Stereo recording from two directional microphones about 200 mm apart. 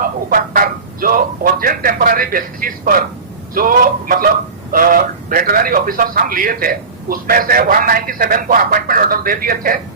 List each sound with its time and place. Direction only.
0.0 s a man's voice: 45° right (ahead or behind)